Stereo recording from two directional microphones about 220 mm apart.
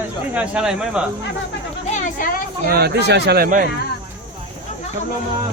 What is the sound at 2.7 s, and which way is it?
Speech, 45° right (ahead or behind).